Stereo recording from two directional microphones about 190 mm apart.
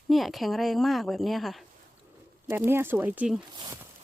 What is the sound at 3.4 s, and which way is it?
Speech, 25° right (ahead or behind).